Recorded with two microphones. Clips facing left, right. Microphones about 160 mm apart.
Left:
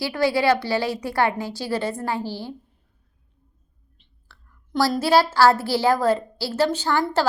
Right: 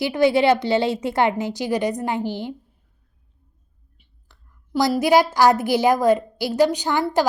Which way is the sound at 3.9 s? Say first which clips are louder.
Left 2 dB; 10° right (ahead or behind).